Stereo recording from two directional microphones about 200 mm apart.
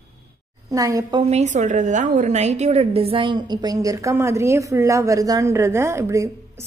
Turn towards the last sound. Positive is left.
turn(degrees=-15)  # may be behind; listen again after turning